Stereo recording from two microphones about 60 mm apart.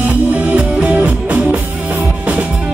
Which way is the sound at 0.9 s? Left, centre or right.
Right.